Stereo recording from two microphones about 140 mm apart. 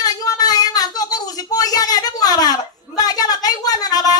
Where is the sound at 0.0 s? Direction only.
30° left (ahead or behind).